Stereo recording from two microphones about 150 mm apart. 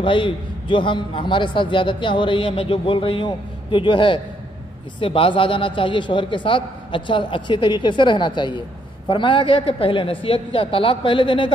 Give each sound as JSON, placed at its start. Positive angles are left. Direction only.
{"t": 0.0, "sound": "a man's voice", "side_deg": 35}